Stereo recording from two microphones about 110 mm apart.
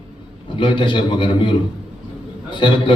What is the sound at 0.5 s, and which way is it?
A man's voice, 50° left (ahead or behind).